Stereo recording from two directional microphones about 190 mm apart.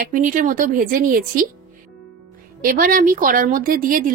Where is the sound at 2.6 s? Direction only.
50° right (ahead or behind).